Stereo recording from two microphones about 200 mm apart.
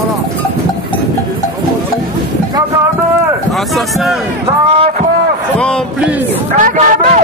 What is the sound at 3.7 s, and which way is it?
Speech, centre (ahead or behind).